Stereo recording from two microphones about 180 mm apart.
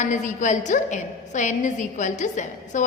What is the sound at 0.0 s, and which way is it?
A woman's voice, 45° left (ahead or behind).